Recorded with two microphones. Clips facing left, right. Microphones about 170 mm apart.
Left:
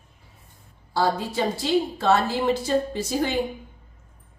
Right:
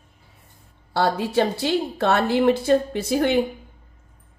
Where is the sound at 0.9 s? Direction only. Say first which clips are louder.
Right 3 dB; 65° right (ahead or behind).